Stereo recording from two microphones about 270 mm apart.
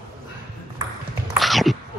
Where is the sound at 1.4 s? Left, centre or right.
Centre.